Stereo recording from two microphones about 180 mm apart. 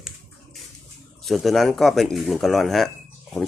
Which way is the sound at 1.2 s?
Centre (ahead or behind).